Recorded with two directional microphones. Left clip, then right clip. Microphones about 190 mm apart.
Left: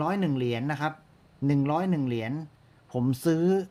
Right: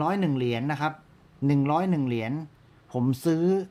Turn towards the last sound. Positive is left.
turn(degrees=10)  # may be behind; listen again after turning